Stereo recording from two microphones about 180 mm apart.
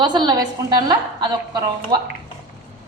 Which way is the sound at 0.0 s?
25° right (ahead or behind).